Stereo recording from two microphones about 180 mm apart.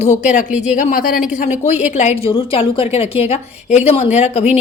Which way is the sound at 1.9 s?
35° left (ahead or behind).